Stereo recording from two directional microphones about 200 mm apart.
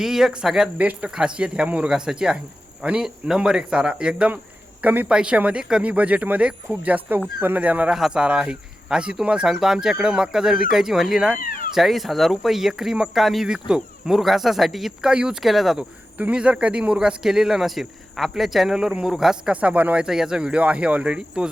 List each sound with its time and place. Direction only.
0.0 s speech: centre (ahead or behind)
11.3 s cat: 45° left (ahead or behind)
11.7 s speech: centre (ahead or behind)